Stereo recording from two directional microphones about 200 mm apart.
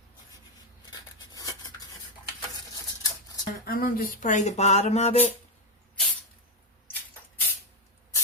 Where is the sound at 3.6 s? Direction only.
45° left (ahead or behind).